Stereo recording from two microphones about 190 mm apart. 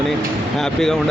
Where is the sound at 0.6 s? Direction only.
Centre (ahead or behind).